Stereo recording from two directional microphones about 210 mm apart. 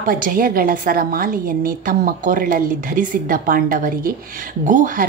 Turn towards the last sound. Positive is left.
turn(degrees=-40)  # may be behind; listen again after turning